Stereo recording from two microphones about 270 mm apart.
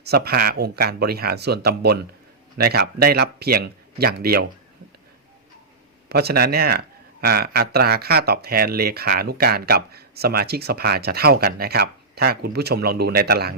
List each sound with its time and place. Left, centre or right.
0.0 s a man's voice: right
6.1 s a man's voice: right